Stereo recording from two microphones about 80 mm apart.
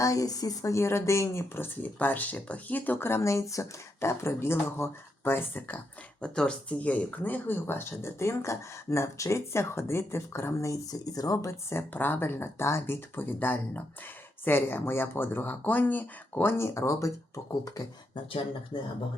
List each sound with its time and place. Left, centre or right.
0.0 s speech: left
6.2 s speech: centre; by 11.5 s left
11.7 s speech: left